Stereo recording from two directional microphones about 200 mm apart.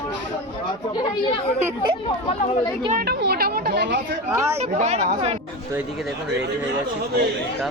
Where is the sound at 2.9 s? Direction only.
55° right (ahead or behind).